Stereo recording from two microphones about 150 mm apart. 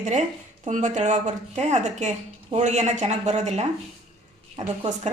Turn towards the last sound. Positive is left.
turn(degrees=-45)  # may be behind; listen again after turning